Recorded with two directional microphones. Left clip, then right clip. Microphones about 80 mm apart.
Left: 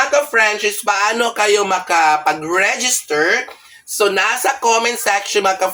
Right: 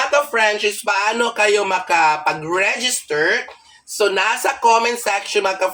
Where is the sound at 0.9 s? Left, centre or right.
Left.